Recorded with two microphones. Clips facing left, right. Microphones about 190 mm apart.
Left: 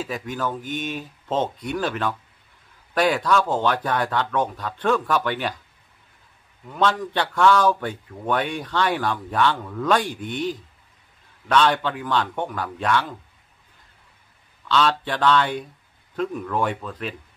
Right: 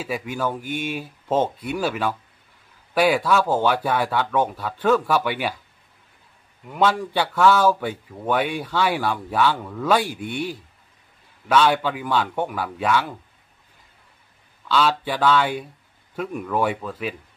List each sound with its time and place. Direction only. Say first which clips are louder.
0.0 s a man's voice: right 2 dB; 10° right (ahead or behind)
6.7 s a man's voice: right 2 dB; 10° right (ahead or behind)
14.7 s a man's voice: even; 5° right (ahead or behind)